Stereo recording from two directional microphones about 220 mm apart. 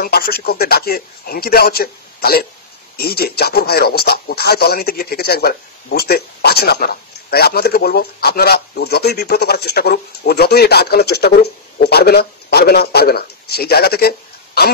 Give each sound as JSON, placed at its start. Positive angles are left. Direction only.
{"t": 0.0, "sound": "a man's voice", "side_deg": 45}